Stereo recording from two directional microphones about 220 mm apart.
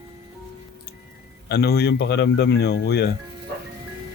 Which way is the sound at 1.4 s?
50° left (ahead or behind).